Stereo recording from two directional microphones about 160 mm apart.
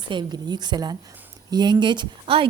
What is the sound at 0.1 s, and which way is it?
A woman's voice, 30° right (ahead or behind).